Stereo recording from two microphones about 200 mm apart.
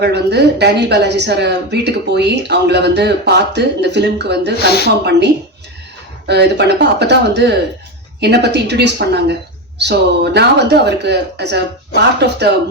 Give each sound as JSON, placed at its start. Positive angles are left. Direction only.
{"t": 0.0, "sound": "speech", "side_deg": -55}
{"t": 6.2, "sound": "speech", "side_deg": -55}